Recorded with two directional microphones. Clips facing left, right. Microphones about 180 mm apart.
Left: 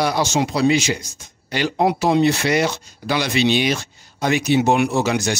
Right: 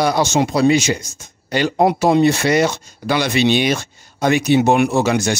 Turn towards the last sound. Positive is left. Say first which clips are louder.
# right 3 dB
turn(degrees=-55)  # may be behind; listen again after turning